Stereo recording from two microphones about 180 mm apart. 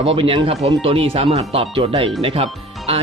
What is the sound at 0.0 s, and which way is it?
Speech, 30° right (ahead or behind).